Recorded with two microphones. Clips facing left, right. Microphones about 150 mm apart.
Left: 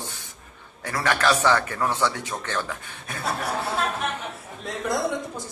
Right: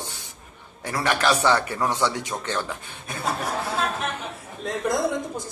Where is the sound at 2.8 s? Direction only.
30° right (ahead or behind).